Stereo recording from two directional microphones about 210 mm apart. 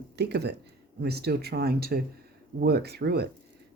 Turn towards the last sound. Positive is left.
turn(degrees=-50)  # may be behind; listen again after turning